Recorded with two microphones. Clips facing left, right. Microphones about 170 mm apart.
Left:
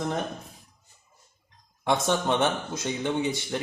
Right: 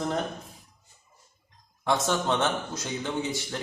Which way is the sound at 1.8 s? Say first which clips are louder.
Left 1 dB; 20° left (ahead or behind).